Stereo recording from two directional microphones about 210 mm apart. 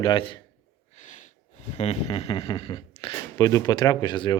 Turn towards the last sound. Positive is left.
turn(degrees=20)  # may be behind; listen again after turning